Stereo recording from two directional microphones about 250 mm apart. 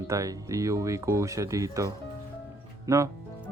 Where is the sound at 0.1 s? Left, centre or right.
Centre.